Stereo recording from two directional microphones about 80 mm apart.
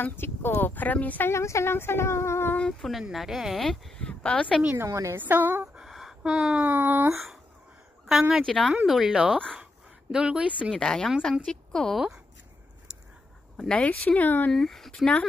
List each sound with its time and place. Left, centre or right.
0.0 s speech: left
1.3 s speech: left
2.6 s speech: centre
4.0 s speech: centre
4.7 s a woman's voice: right
5.1 s a woman's voice: right
5.8 s a sound: centre
6.6 s a woman's voice: right
7.1 s speech: centre
8.5 s speech: centre
8.8 s speech: centre
10.8 s a woman's voice: centre
13.6 s speech: centre
14.5 s speech: centre